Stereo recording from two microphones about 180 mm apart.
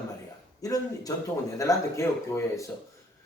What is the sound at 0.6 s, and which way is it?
Speech, 20° left (ahead or behind).